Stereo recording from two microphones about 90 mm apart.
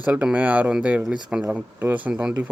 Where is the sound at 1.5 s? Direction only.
20° right (ahead or behind).